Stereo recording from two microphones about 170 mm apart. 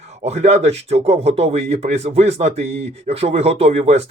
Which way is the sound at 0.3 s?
40° right (ahead or behind).